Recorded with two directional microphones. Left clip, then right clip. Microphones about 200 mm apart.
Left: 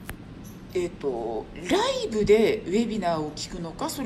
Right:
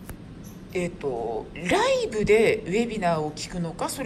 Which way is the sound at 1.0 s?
25° left (ahead or behind).